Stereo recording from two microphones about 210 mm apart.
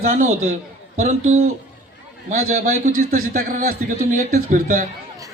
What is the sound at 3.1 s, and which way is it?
A man's voice, 40° right (ahead or behind).